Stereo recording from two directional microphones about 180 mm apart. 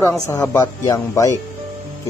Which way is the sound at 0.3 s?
15° left (ahead or behind).